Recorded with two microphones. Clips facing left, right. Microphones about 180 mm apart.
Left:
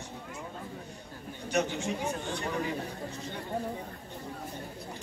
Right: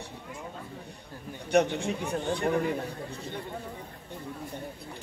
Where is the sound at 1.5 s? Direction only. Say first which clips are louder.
Right 6 dB; 60° right (ahead or behind).